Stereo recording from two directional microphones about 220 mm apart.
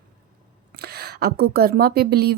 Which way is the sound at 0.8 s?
45° right (ahead or behind).